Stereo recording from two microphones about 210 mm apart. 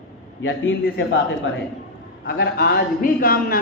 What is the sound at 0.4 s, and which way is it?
A man's voice, 65° left (ahead or behind).